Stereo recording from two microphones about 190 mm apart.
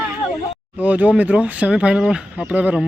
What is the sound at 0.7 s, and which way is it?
Speech, 10° right (ahead or behind).